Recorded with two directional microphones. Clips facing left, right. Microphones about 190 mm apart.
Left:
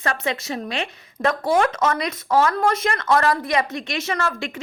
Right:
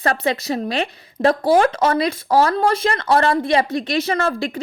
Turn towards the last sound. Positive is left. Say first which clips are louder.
# right 5 dB
turn(degrees=-35)  # may be behind; listen again after turning